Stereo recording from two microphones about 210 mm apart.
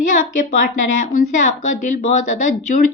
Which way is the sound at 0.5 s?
40° left (ahead or behind).